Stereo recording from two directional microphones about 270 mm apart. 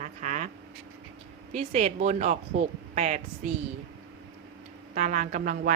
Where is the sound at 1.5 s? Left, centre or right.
Right.